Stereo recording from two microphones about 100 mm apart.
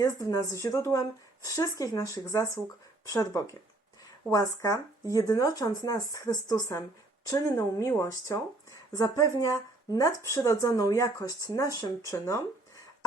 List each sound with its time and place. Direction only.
0.0 s speech: 30° left (ahead or behind)